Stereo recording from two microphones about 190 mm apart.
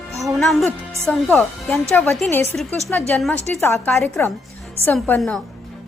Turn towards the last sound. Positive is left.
turn(degrees=10)  # may be behind; listen again after turning